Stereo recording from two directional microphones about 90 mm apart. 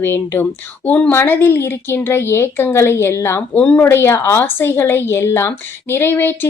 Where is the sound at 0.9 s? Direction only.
15° left (ahead or behind).